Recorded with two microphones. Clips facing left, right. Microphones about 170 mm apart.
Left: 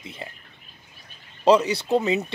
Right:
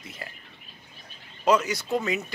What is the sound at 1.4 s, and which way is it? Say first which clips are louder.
Speech: left 5 dB; 30° left (ahead or behind).